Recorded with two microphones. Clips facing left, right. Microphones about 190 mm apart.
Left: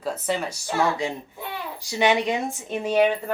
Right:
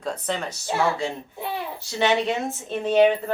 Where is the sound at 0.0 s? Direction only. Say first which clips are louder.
Left 2 dB; 5° left (ahead or behind).